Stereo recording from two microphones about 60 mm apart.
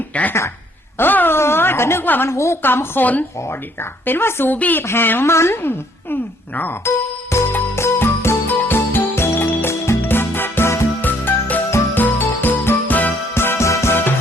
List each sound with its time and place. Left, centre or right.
0.1 s a woman's voice: left
2.0 s a woman's voice: left
2.3 s a woman's voice: left
2.6 s a woman's voice: left
4.0 s a woman's voice: left
4.5 s a woman's voice: left
4.8 s a woman's voice: left
6.8 s music: left
11.0 s music: left
11.9 s jingle: left
13.3 s music: left